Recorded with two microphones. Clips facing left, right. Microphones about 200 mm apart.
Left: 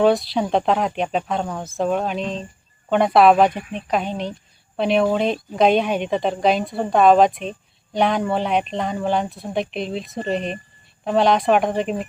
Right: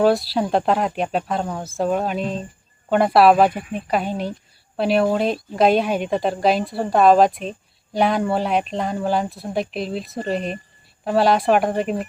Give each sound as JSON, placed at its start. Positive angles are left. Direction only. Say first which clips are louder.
{"t": 0.0, "sound": "a woman's voice", "louder": "even", "side_deg": -5}